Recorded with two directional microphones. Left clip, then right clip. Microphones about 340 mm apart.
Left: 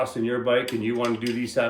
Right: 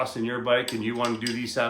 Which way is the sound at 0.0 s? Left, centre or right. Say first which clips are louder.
Left 3 dB; centre.